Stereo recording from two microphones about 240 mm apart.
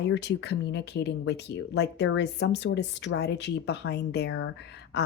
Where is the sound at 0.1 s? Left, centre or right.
Left.